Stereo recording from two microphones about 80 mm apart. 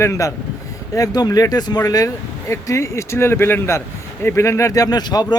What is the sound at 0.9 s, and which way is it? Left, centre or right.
Speech, left.